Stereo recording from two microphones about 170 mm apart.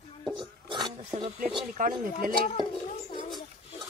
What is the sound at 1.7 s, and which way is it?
Speech, 50° right (ahead or behind).